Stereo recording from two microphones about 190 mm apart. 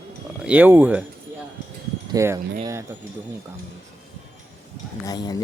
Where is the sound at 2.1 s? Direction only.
15° right (ahead or behind).